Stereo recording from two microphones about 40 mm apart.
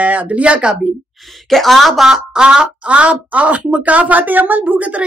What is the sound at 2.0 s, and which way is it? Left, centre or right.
Speech, centre.